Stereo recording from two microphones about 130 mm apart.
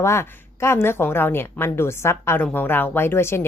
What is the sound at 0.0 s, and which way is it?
A woman's voice, 20° left (ahead or behind).